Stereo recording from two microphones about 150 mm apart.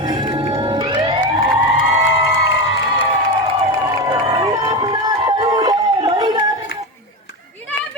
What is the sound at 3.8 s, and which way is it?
Crowd, 25° right (ahead or behind).